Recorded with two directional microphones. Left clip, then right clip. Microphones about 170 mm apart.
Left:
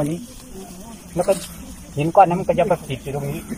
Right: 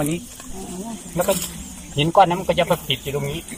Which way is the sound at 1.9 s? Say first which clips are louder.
Left 1 dB; 5° left (ahead or behind).